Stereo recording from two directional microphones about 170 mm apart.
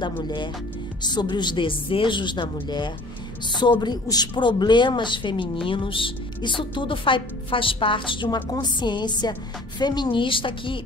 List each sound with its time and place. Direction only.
1.0 s a woman's voice: 25° left (ahead or behind)